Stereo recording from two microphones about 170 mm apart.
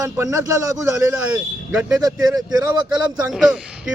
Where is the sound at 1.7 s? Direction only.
5° right (ahead or behind).